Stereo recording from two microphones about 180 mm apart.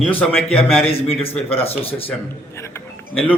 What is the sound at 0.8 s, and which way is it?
A man's voice, 35° left (ahead or behind).